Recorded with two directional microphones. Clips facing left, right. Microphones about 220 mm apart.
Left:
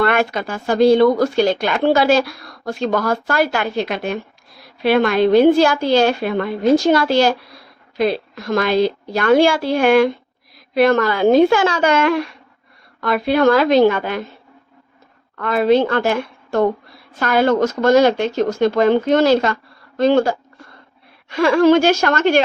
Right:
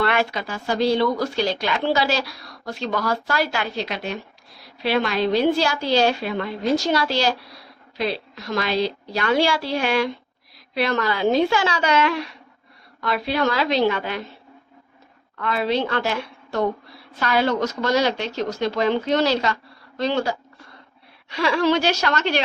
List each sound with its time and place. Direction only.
0.0 s a woman's voice: 50° left (ahead or behind)
15.4 s a woman's voice: 50° left (ahead or behind)